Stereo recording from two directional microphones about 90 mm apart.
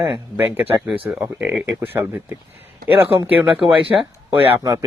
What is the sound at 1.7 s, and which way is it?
Speech, 25° right (ahead or behind).